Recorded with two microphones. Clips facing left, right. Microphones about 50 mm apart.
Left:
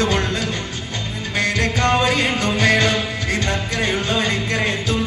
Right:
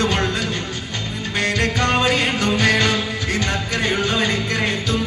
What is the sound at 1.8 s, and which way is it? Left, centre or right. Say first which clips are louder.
Music: left 2 dB; left.